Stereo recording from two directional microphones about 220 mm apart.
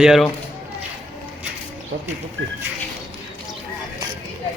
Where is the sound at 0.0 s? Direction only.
Centre (ahead or behind).